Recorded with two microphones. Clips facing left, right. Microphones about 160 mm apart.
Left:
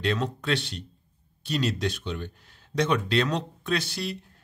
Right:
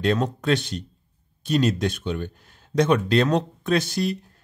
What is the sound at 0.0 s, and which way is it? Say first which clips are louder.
Speech: right 5 dB; 45° right (ahead or behind).